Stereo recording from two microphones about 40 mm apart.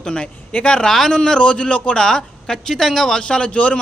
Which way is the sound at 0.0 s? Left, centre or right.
Left.